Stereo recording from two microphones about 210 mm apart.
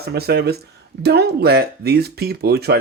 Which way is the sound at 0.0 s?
50° right (ahead or behind).